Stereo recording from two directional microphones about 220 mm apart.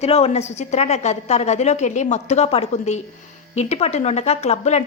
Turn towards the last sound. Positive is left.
turn(degrees=30)  # may be behind; listen again after turning